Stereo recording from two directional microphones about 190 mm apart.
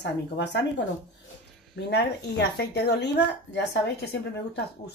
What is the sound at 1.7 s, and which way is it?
A woman's voice, 65° left (ahead or behind).